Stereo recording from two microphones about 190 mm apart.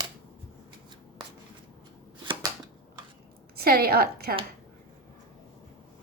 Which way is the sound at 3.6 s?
55° right (ahead or behind).